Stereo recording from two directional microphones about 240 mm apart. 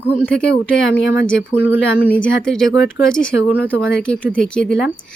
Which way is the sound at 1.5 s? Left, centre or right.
Left.